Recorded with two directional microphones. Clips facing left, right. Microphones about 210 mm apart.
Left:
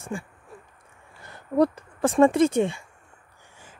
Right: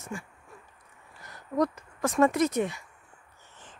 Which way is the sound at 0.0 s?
30° left (ahead or behind).